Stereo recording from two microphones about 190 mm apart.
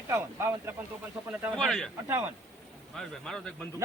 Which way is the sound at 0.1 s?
15° right (ahead or behind).